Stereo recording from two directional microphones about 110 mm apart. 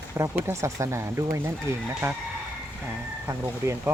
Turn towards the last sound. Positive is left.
turn(degrees=-25)  # may be behind; listen again after turning